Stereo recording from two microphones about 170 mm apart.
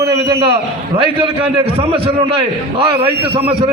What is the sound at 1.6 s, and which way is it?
A man's voice, 35° right (ahead or behind).